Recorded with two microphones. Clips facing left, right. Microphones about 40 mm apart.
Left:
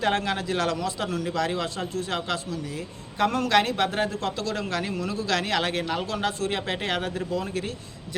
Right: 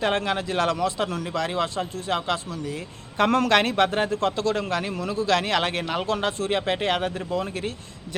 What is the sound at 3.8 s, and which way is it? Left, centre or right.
A man's voice, right.